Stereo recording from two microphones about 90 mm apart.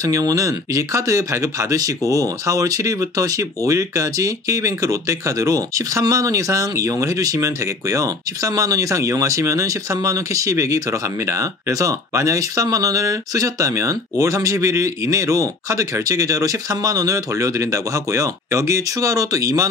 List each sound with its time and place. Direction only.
0.0 s speech: 40° right (ahead or behind)